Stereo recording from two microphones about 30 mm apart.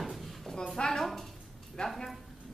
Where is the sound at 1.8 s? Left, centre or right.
Left.